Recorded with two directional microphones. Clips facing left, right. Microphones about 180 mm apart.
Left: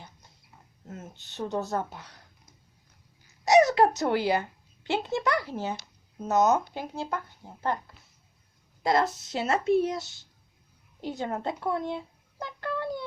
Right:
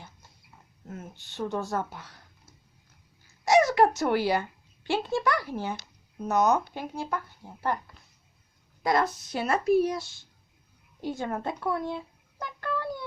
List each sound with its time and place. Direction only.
0.9 s speech: 20° left (ahead or behind)
3.4 s a child's voice: 20° left (ahead or behind)
8.8 s speech: 25° left (ahead or behind)
12.4 s a sound: 20° left (ahead or behind)